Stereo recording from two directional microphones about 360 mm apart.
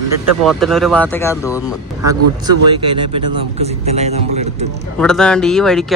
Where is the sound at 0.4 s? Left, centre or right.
Centre.